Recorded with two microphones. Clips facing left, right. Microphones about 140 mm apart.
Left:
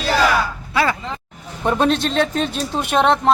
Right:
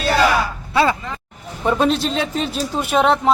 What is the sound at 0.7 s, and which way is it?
Speech, 25° right (ahead or behind).